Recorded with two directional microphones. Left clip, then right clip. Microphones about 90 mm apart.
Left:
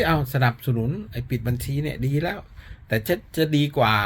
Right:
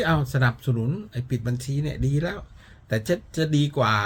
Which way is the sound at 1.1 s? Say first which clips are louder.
Left 1 dB; 30° right (ahead or behind).